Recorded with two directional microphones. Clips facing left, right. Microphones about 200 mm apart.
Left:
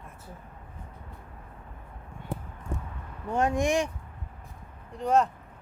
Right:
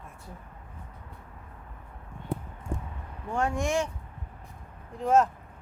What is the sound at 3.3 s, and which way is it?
Speech, 20° left (ahead or behind).